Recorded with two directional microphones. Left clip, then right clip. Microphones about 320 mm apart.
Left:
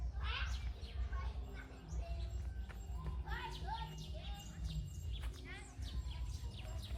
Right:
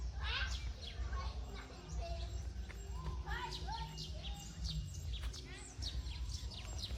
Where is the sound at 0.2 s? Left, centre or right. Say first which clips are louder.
Right 3 dB; right.